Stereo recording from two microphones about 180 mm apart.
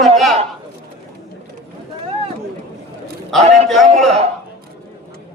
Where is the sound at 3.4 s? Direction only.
40° right (ahead or behind).